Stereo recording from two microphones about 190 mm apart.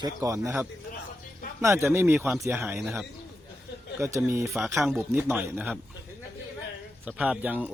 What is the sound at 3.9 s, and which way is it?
Speech, 15° right (ahead or behind).